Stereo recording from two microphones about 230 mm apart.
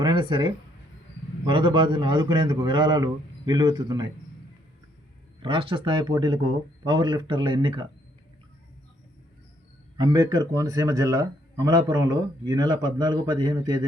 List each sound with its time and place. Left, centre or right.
0.0 s a man's voice: right
5.4 s a man's voice: right
10.0 s a man's voice: centre